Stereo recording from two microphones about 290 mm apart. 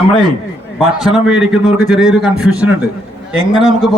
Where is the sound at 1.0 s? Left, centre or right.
Centre.